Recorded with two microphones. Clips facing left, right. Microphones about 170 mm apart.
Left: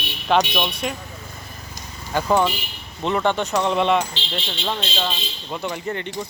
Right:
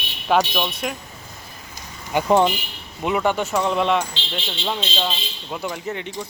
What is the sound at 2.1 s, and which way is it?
Speech, 20° right (ahead or behind).